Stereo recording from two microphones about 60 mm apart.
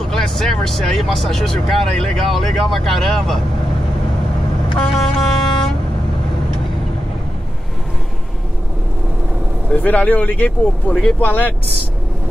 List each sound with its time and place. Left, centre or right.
0.1 s speech: centre
4.9 s music: centre
9.7 s speech: left